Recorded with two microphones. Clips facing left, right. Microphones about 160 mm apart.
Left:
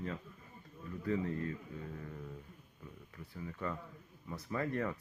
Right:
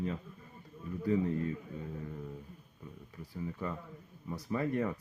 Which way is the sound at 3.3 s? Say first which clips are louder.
Right 2 dB; 10° right (ahead or behind).